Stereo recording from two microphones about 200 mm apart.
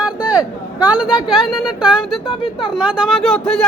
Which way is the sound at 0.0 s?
5° right (ahead or behind).